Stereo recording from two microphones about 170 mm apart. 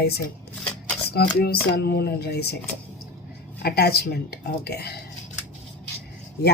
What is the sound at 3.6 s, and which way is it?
Speech, 65° left (ahead or behind).